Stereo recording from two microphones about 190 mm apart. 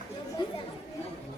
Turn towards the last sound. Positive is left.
turn(degrees=20)  # may be behind; listen again after turning